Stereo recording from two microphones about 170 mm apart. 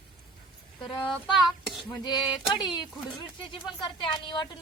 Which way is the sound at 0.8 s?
25° left (ahead or behind).